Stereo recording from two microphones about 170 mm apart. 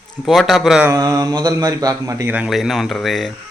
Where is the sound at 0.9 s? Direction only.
20° right (ahead or behind).